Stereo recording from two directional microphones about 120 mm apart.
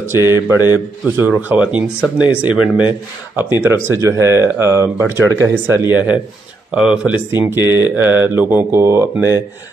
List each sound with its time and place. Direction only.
0.1 s speech: 20° right (ahead or behind)